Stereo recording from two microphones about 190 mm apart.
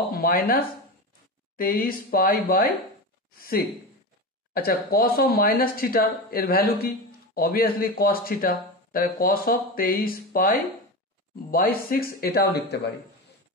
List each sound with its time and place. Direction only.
0.1 s speech: 50° left (ahead or behind)
1.6 s speech: 50° left (ahead or behind)